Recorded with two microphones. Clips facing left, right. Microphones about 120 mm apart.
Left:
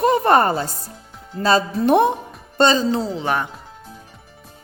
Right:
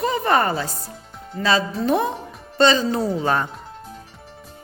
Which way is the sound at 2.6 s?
40° left (ahead or behind).